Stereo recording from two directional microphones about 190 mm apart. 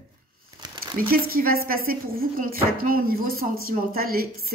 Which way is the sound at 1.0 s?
50° right (ahead or behind).